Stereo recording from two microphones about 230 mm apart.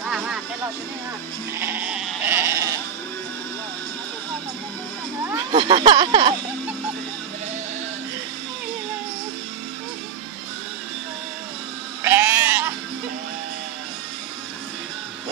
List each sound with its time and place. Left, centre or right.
0.0 s music: centre
1.6 s sheep: centre
5.3 s speech: centre
12.0 s sheep: centre